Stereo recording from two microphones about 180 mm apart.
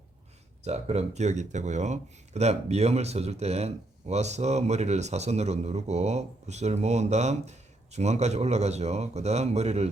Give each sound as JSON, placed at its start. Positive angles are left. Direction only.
{"t": 0.6, "sound": "speech", "side_deg": -35}